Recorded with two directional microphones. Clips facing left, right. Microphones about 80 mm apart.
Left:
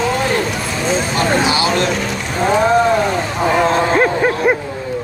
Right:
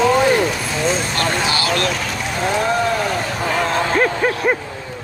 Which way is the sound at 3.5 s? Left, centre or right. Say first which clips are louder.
Left 4 dB; left.